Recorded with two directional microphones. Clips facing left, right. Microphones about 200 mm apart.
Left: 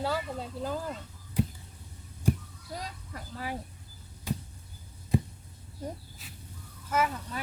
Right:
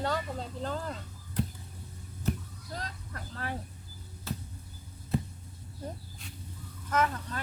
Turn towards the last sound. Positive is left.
turn(degrees=10)  # may be behind; listen again after turning